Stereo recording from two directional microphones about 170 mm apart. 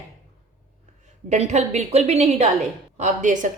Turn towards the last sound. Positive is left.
turn(degrees=-50)  # may be behind; listen again after turning